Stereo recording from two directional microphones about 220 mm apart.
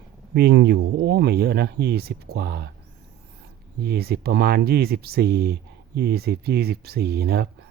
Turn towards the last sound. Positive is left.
turn(degrees=-45)  # may be behind; listen again after turning